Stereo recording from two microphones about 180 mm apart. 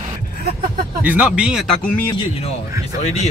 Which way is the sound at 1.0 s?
10° right (ahead or behind).